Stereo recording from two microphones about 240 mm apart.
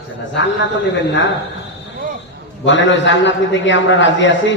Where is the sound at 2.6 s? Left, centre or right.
Left.